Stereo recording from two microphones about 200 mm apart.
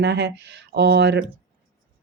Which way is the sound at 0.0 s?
60° right (ahead or behind).